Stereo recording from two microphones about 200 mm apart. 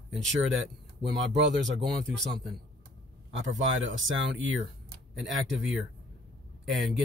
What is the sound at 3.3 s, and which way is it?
Speech, 70° right (ahead or behind).